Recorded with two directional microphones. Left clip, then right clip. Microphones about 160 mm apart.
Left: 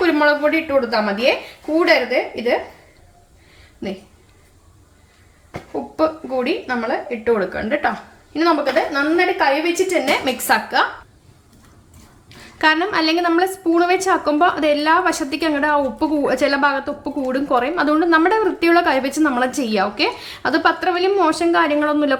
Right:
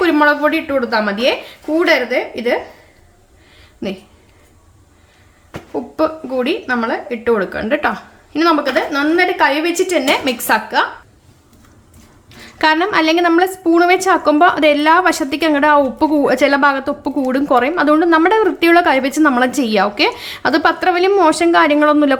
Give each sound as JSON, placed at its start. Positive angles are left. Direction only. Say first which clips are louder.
{"t": 0.0, "sound": "speech", "louder": "right 3 dB", "side_deg": -15}
{"t": 5.7, "sound": "speech", "louder": "right 2 dB", "side_deg": -20}
{"t": 12.4, "sound": "a woman's voice", "louder": "right 3 dB", "side_deg": -20}